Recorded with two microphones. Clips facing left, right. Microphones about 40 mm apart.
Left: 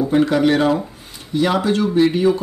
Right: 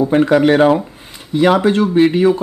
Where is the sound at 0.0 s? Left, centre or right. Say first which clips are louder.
Right 4 dB; right.